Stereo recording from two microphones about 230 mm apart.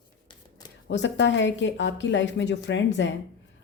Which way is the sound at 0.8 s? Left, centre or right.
Left.